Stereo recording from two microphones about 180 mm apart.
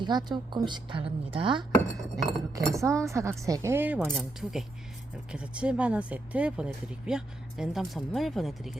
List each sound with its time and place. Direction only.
0.0 s a woman's voice: 25° right (ahead or behind)
2.1 s speech: centre (ahead or behind)
2.7 s speech: 15° right (ahead or behind)
4.0 s speech: centre (ahead or behind)